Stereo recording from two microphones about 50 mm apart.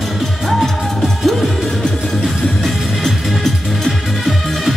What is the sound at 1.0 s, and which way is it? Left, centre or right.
Music, centre.